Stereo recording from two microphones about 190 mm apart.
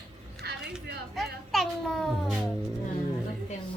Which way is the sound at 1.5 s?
Centre (ahead or behind).